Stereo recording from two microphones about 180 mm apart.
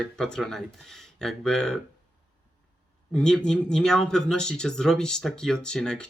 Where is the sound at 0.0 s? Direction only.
5° left (ahead or behind).